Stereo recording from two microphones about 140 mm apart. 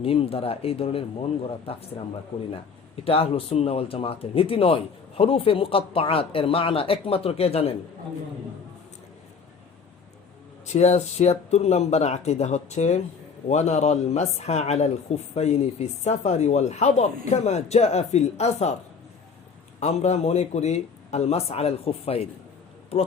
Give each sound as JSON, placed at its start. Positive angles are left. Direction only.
{"t": 0.0, "sound": "speech", "side_deg": 45}
{"t": 3.0, "sound": "speech", "side_deg": 45}
{"t": 10.7, "sound": "speech", "side_deg": 55}
{"t": 19.8, "sound": "speech", "side_deg": 50}